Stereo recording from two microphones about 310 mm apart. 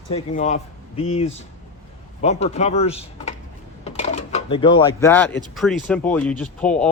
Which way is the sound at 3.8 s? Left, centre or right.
Left.